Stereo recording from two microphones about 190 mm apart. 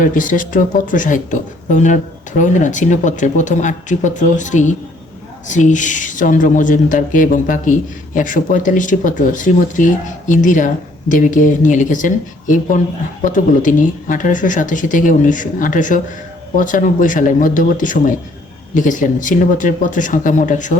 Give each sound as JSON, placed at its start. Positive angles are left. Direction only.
{"t": 0.0, "sound": "speech", "side_deg": 45}